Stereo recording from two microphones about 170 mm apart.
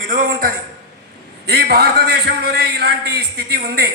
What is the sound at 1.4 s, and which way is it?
A man's voice, 70° right (ahead or behind).